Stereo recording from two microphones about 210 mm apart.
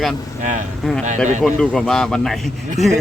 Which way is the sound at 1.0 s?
35° right (ahead or behind).